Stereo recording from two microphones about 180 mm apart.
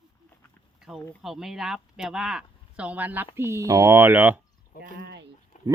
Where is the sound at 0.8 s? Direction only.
Centre (ahead or behind).